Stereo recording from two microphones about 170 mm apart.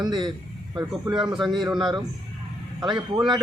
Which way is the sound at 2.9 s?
25° right (ahead or behind).